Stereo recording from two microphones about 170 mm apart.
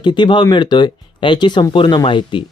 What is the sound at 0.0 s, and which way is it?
Speech, 25° left (ahead or behind).